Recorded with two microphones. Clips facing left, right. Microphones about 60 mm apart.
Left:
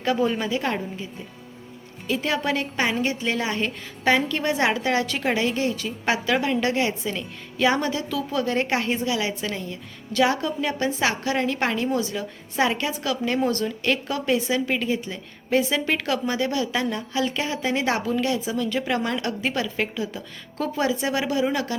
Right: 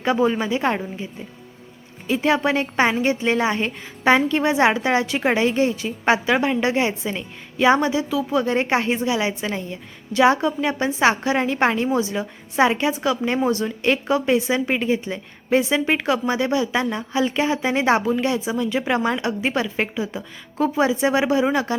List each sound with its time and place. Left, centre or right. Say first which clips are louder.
0.0 s speech: right 3 dB; right
2.0 s speech: right 5 dB; right